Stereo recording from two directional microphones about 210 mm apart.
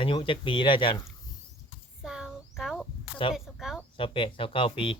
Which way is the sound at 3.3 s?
Centre (ahead or behind).